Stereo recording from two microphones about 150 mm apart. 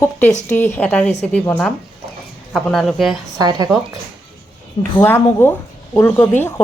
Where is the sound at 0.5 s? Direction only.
10° left (ahead or behind).